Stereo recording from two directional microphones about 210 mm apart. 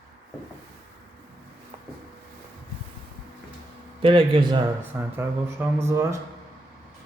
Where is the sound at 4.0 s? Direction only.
25° right (ahead or behind).